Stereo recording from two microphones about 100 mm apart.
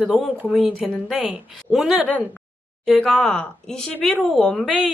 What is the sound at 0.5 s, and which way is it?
A woman's voice, 5° right (ahead or behind).